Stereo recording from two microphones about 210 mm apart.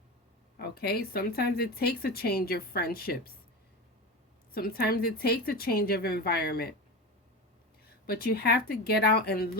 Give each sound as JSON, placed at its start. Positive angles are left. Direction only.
{"t": 0.5, "sound": "speech", "side_deg": 50}
{"t": 4.5, "sound": "speech", "side_deg": 45}
{"t": 7.9, "sound": "speech", "side_deg": 45}